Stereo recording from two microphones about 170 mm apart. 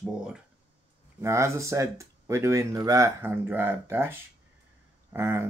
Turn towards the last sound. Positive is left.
turn(degrees=-15)  # may be behind; listen again after turning